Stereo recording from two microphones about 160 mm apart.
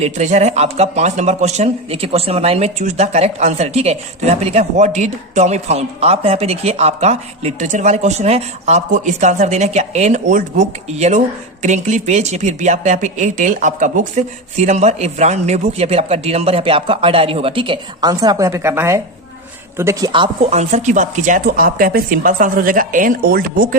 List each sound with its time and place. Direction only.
0.0 s speech: 45° right (ahead or behind); by 20.1 s 15° right (ahead or behind)
20.1 s speech: 35° right (ahead or behind); by 23.6 s 65° right (ahead or behind)